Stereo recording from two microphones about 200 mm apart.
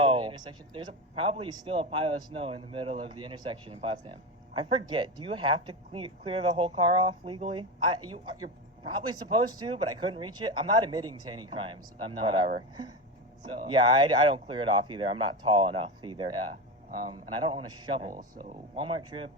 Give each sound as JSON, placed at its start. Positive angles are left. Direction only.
{"t": 0.0, "sound": "a man's voice", "side_deg": -25}
{"t": 13.5, "sound": "a man's voice", "side_deg": -25}